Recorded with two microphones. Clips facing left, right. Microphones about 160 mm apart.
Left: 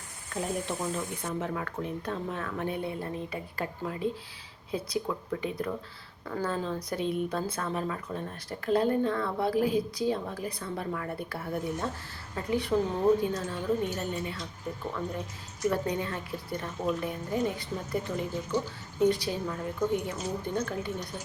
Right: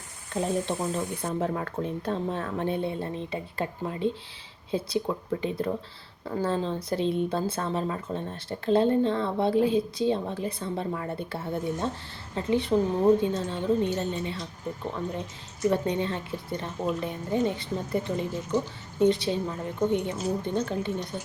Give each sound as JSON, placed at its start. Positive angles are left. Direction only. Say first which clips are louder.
{"t": 0.3, "sound": "speech", "louder": "right 5 dB", "side_deg": -30}
{"t": 15.7, "sound": "speech", "louder": "right 4 dB", "side_deg": -25}